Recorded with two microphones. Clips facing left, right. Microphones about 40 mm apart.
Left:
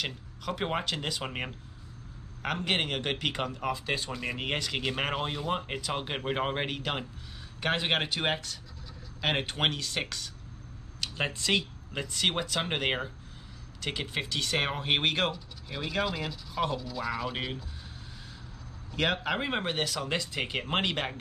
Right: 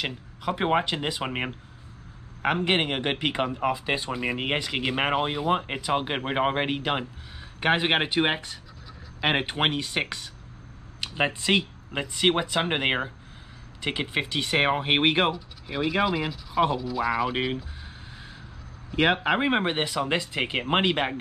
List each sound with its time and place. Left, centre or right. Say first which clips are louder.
0.0 s speech: right 5 dB; centre
15.3 s speech: right 8 dB; centre
18.9 s speech: right 7 dB; right